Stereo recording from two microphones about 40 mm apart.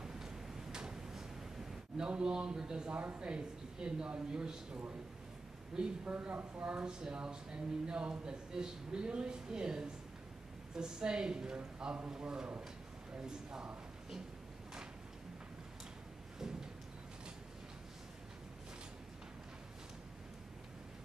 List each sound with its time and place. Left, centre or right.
0.0 s a sound: centre
2.0 s speech: right
5.7 s speech: centre
6.2 s speech: right